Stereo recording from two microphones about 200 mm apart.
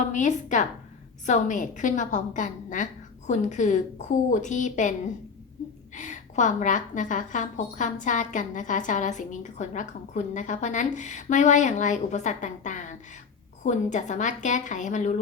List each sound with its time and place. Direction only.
0.1 s a woman's voice: 40° left (ahead or behind)
6.0 s a woman's voice: 40° left (ahead or behind)